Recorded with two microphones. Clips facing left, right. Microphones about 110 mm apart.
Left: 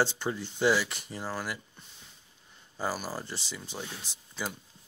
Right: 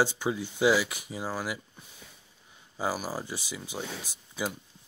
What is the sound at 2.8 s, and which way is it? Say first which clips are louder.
Speech: right 2 dB; 10° right (ahead or behind).